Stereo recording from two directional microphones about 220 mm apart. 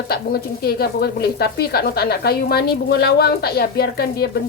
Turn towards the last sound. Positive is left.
turn(degrees=45)  # may be behind; listen again after turning